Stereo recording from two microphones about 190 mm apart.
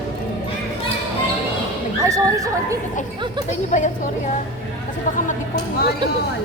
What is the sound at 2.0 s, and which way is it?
Neigh, 15° right (ahead or behind).